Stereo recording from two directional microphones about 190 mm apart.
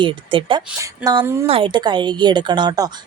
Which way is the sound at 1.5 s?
30° right (ahead or behind).